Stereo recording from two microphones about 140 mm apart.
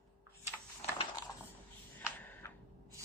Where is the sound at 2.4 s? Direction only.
20° left (ahead or behind).